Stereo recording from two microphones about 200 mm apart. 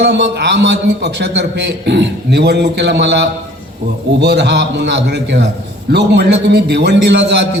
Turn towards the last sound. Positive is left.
turn(degrees=-60)  # may be behind; listen again after turning